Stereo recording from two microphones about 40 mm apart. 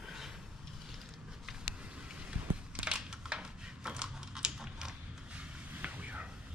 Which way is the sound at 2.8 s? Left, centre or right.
Right.